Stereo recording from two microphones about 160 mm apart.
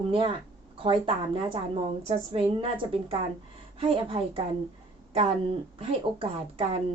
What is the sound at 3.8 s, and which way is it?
A woman's voice, 35° right (ahead or behind).